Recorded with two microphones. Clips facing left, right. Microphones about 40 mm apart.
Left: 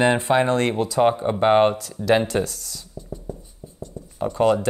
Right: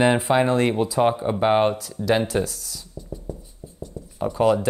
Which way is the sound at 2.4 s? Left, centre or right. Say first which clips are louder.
Even; centre.